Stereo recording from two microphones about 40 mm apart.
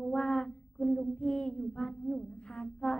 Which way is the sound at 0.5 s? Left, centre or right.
Centre.